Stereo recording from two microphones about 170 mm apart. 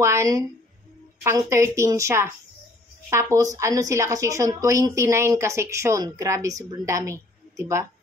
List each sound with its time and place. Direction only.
0.0 s a woman's voice: 15° right (ahead or behind)